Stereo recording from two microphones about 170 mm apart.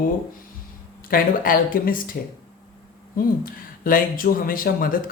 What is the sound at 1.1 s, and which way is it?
Speech, 55° left (ahead or behind).